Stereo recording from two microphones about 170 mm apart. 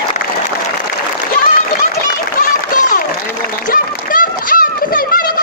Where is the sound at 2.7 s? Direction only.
50° left (ahead or behind).